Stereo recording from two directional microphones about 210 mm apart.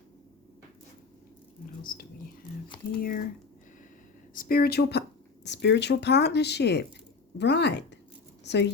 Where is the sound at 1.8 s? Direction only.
40° left (ahead or behind).